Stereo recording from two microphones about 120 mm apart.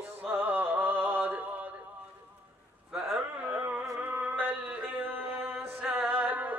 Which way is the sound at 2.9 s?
10° right (ahead or behind).